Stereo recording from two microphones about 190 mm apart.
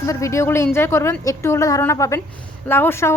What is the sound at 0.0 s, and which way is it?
A woman's voice, 15° left (ahead or behind).